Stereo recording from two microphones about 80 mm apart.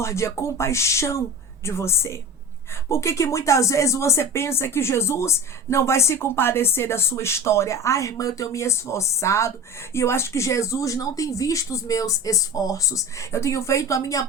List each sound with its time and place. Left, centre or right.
0.0 s speech: left